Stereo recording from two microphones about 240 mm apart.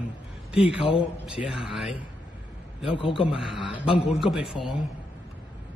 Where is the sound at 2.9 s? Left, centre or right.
Left.